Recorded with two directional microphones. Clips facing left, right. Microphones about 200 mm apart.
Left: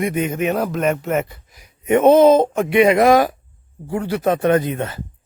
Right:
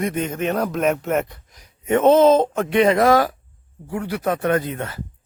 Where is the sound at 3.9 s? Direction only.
30° left (ahead or behind).